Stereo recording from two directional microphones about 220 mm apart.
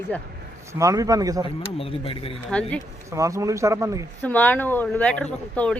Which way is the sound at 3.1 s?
15° right (ahead or behind).